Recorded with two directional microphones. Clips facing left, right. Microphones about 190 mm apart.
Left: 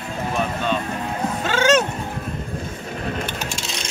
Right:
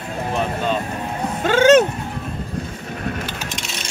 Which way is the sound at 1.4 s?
55° right (ahead or behind).